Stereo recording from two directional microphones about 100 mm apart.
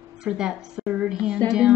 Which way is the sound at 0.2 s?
5° right (ahead or behind).